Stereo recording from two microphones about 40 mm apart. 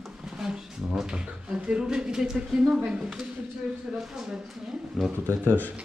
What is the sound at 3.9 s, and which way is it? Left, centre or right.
Speech, centre.